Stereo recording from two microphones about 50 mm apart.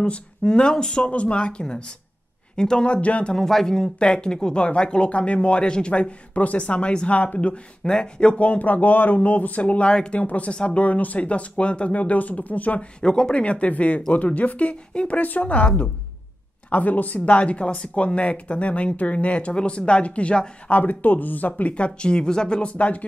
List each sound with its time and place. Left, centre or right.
0.0 s speech: centre
3.3 s speech: centre; by 12.8 s left
13.0 s speech: centre
16.7 s speech: left
21.7 s speech: left